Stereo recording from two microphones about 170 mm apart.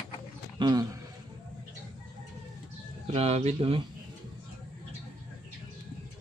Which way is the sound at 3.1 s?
40° right (ahead or behind).